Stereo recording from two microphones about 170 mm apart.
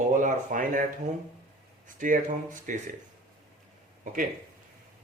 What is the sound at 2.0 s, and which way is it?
Speech, 50° right (ahead or behind).